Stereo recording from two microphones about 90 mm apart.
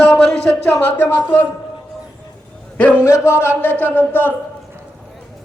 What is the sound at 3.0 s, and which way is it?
Speech, 30° left (ahead or behind).